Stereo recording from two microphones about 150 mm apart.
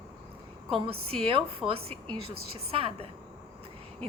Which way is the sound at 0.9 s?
40° right (ahead or behind).